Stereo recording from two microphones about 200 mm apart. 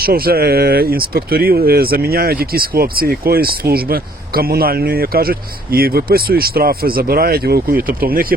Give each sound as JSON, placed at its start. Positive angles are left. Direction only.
{"t": 0.0, "sound": "speech", "side_deg": -50}